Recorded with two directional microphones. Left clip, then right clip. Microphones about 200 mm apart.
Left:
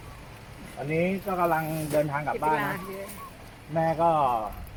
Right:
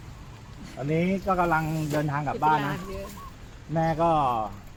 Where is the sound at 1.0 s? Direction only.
45° right (ahead or behind).